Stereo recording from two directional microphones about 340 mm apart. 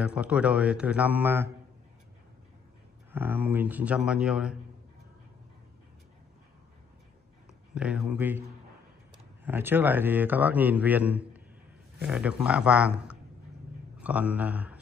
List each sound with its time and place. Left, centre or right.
0.0 s a man's voice: centre
3.1 s a man's voice: centre
7.7 s a man's voice: centre